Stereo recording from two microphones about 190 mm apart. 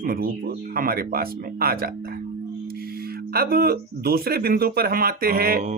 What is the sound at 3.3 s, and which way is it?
Music, 55° right (ahead or behind).